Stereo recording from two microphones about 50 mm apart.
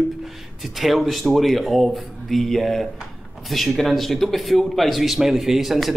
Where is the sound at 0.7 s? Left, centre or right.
Centre.